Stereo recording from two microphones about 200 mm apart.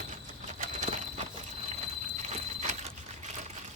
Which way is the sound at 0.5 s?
40° right (ahead or behind).